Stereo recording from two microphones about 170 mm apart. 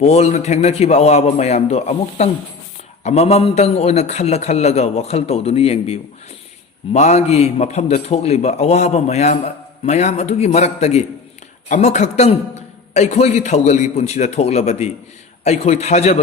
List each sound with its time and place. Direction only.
0.0 s a man's voice: 40° left (ahead or behind)